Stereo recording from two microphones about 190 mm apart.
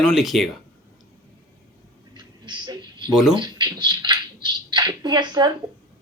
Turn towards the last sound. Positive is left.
turn(degrees=-20)  # may be behind; listen again after turning